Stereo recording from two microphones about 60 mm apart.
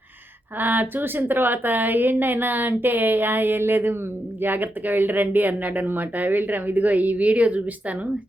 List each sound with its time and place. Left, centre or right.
0.6 s speech: right